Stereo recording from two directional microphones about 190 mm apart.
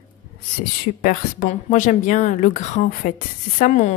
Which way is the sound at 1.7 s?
40° left (ahead or behind).